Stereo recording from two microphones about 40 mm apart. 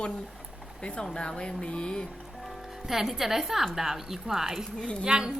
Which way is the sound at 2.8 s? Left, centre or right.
Centre.